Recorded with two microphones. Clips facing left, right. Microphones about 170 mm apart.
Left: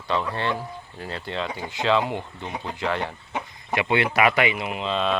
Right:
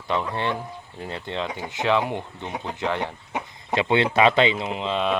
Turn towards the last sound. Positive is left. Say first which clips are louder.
# right 1 dB
turn(degrees=-15)  # may be behind; listen again after turning